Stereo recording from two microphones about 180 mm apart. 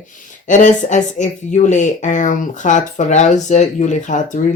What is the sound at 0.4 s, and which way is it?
Speech, 45° left (ahead or behind).